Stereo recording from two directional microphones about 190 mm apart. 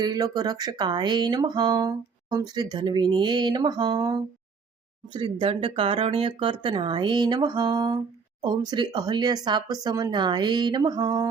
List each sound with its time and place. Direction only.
0.0 s speech: 20° right (ahead or behind)